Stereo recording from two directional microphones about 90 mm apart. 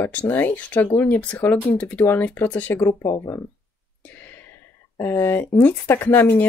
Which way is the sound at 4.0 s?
20° left (ahead or behind).